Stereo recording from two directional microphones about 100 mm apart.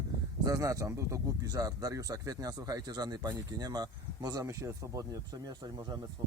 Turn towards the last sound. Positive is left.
turn(degrees=-35)  # may be behind; listen again after turning